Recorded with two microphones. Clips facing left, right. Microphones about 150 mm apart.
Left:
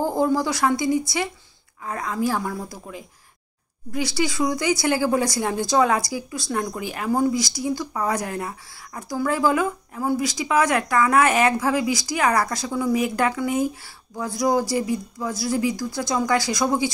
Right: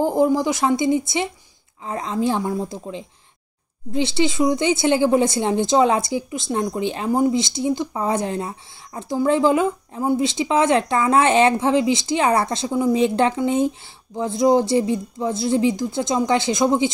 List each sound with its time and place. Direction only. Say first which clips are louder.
0.0 s speech: right 3 dB; 20° right (ahead or behind)